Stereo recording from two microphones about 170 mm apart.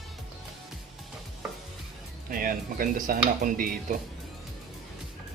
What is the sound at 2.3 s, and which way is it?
Speech, 55° right (ahead or behind).